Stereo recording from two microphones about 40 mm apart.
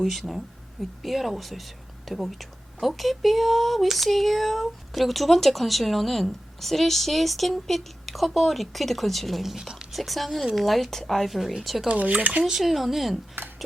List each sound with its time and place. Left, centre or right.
0.0 s speech: centre
11.9 s speech: right
12.4 s speech: centre
12.6 s speech: centre